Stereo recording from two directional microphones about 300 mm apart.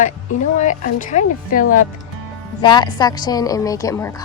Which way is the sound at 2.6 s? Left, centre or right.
Centre.